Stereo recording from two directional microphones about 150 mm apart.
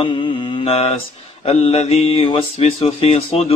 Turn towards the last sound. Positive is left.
turn(degrees=40)  # may be behind; listen again after turning